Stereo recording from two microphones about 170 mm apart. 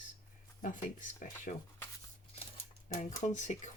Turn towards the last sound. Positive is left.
turn(degrees=45)  # may be behind; listen again after turning